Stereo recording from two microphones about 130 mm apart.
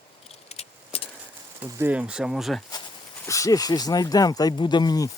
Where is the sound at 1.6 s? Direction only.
10° right (ahead or behind).